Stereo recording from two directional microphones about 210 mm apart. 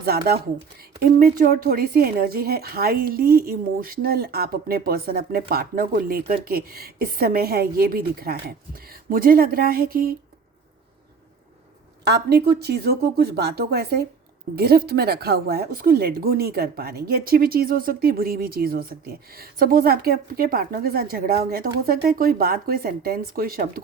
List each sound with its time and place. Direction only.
0.0 s a woman's voice: 45° right (ahead or behind)
12.0 s a woman's voice: 50° right (ahead or behind)